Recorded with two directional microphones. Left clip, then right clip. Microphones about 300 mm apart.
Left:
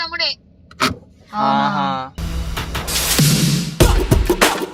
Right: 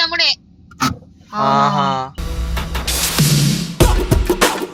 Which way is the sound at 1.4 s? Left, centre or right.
Centre.